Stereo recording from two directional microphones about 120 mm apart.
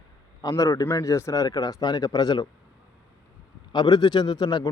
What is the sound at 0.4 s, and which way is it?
Speech, 25° left (ahead or behind).